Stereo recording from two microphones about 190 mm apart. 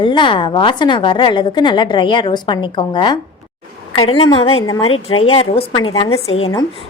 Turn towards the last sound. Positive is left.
turn(degrees=30)  # may be behind; listen again after turning